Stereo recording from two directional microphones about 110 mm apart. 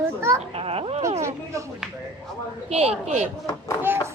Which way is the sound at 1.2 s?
25° right (ahead or behind).